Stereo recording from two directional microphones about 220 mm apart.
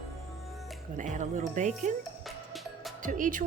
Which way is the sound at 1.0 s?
35° right (ahead or behind).